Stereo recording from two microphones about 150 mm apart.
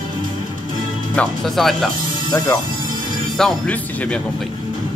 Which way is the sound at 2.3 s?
20° left (ahead or behind).